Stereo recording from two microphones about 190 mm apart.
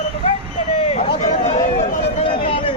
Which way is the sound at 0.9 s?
35° left (ahead or behind).